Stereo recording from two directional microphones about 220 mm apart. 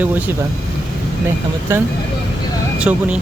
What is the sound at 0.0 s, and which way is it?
Speech, 10° right (ahead or behind).